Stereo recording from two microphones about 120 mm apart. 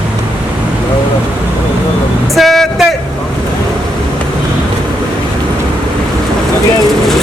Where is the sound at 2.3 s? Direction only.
Centre (ahead or behind).